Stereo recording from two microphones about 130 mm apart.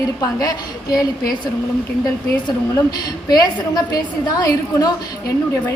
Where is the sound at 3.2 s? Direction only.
30° left (ahead or behind).